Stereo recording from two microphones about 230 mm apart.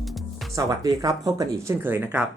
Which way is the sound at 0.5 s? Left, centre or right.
Centre.